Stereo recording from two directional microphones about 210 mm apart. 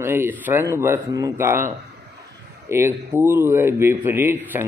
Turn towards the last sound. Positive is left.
turn(degrees=-10)  # may be behind; listen again after turning